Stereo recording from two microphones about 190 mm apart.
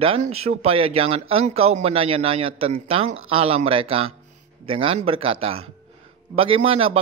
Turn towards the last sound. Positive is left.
turn(degrees=-30)  # may be behind; listen again after turning